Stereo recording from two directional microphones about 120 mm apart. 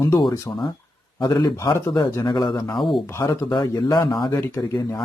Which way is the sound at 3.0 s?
25° left (ahead or behind).